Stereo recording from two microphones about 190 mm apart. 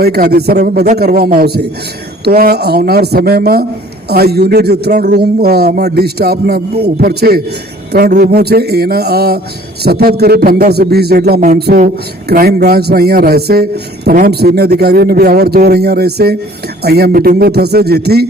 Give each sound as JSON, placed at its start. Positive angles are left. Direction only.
{"t": 0.0, "sound": "a man's voice", "side_deg": -55}